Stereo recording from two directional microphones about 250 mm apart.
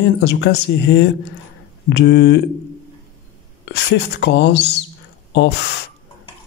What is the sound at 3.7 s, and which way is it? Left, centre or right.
Speech, left.